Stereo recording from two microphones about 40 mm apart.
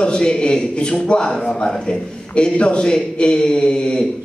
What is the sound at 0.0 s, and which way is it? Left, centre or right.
A man's voice, left.